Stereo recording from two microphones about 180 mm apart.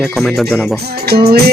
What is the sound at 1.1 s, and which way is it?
Music, 60° right (ahead or behind).